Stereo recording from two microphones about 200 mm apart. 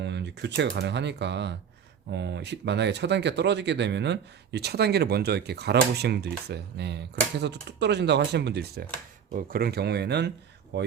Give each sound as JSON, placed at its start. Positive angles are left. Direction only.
{"t": 0.0, "sound": "speech", "side_deg": -60}